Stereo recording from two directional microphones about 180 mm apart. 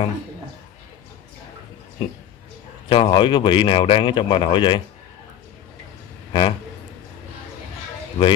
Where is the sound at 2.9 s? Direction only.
30° left (ahead or behind).